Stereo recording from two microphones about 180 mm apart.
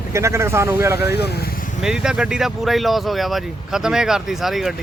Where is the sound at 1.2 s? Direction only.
65° left (ahead or behind).